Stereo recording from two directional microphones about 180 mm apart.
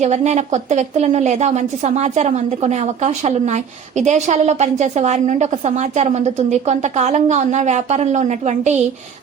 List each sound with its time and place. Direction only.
0.0 s a woman's voice: 40° right (ahead or behind)